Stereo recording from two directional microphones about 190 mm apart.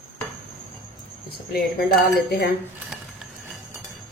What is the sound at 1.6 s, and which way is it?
Speech, centre (ahead or behind).